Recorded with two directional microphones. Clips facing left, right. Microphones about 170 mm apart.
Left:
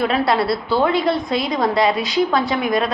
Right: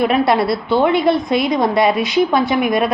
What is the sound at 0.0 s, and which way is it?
A woman's voice, 20° right (ahead or behind).